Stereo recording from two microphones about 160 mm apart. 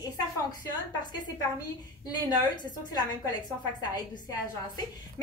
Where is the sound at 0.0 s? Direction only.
25° left (ahead or behind).